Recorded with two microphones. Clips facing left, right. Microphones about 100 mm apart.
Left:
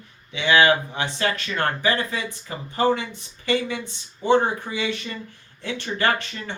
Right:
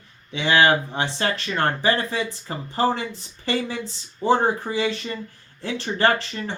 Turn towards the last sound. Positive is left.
turn(degrees=-30)  # may be behind; listen again after turning